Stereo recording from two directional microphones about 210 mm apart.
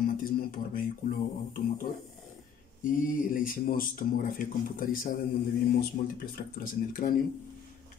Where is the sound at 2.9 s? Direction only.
40° left (ahead or behind).